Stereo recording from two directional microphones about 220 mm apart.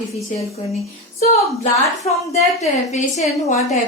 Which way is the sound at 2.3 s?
30° left (ahead or behind).